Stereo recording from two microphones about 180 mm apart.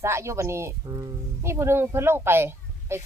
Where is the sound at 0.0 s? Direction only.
15° right (ahead or behind).